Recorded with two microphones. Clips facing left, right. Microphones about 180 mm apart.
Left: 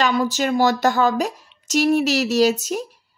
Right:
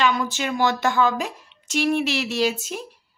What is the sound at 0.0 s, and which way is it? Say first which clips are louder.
Speech: left 3 dB; 35° left (ahead or behind).